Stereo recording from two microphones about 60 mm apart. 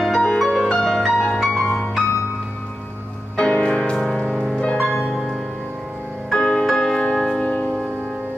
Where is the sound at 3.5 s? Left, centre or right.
Left.